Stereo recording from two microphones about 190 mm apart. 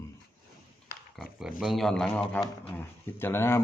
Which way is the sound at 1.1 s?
Centre (ahead or behind).